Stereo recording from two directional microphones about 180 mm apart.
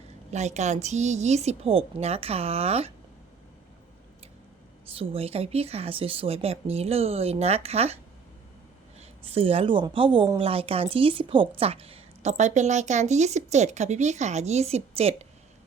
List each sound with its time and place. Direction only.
0.3 s a woman's voice: 40° right (ahead or behind)
4.9 s a woman's voice: 35° right (ahead or behind)
9.0 s a woman's voice: 35° right (ahead or behind)